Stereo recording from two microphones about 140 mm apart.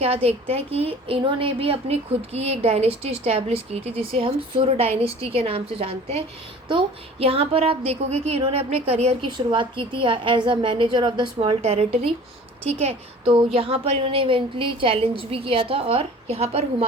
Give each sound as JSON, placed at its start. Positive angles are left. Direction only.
{"t": 0.0, "sound": "a woman's voice", "side_deg": -45}
{"t": 9.5, "sound": "a woman's voice", "side_deg": -35}